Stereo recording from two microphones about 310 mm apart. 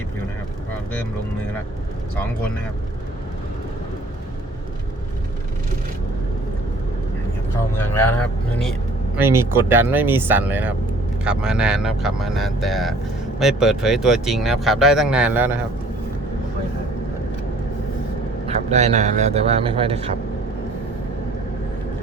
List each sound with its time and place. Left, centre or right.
7.8 s speech: centre
9.1 s speech: centre
18.4 s speech: right